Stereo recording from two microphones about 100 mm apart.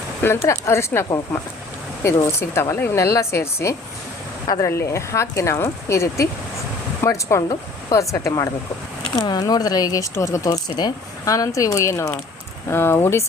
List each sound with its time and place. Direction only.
0.2 s speech: 25° left (ahead or behind)
2.4 s speech: 25° left (ahead or behind)